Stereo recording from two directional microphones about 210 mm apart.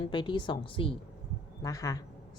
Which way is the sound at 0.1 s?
20° left (ahead or behind).